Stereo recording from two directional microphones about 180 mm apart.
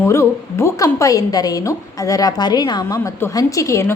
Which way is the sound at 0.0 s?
15° left (ahead or behind).